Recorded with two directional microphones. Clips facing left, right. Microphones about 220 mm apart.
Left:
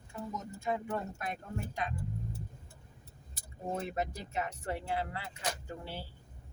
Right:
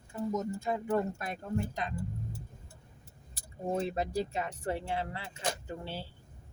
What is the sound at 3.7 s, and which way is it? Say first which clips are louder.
Speech: right 5 dB; 30° right (ahead or behind).